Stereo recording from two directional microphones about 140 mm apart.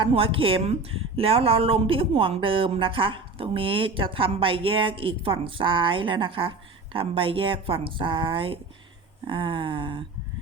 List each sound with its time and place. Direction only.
0.0 s speech: 40° right (ahead or behind)